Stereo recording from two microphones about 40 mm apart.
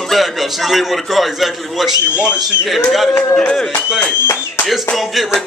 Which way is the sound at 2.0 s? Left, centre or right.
Right.